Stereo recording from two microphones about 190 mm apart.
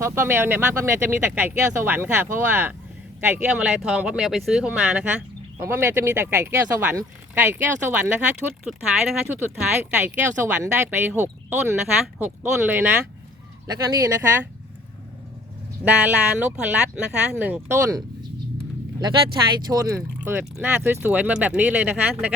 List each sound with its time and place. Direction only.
0.0 s speech: 15° right (ahead or behind)
15.8 s speech: 10° right (ahead or behind)
19.7 s speech: 15° right (ahead or behind)